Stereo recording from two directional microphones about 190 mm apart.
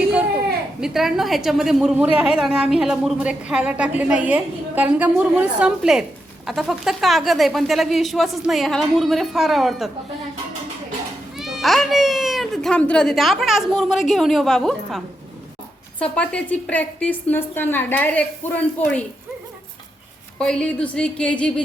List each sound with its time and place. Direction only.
0.8 s a woman's voice: centre (ahead or behind)
11.3 s a woman's voice: centre (ahead or behind)
20.4 s a woman's voice: 5° left (ahead or behind)